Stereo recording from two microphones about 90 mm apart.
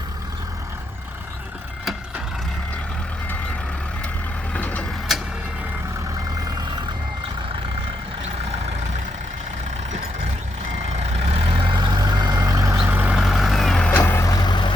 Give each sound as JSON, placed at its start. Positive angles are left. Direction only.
{"t": 4.5, "sound": "vehicle", "side_deg": 15}
{"t": 11.3, "sound": "vehicle", "side_deg": -90}
{"t": 11.8, "sound": "vehicle", "side_deg": -50}
{"t": 12.4, "sound": "vehicle", "side_deg": -35}
{"t": 12.7, "sound": "vehicle", "side_deg": -10}
{"t": 13.9, "sound": "vehicle", "side_deg": 25}
{"t": 14.3, "sound": "vehicle", "side_deg": 50}